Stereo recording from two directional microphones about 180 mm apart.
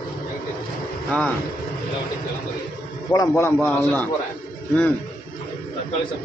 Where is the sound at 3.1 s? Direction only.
20° left (ahead or behind).